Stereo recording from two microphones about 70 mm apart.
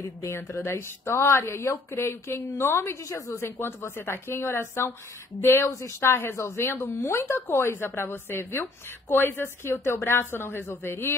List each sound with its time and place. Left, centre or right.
0.3 s a woman's voice: left
3.0 s a woman's voice: left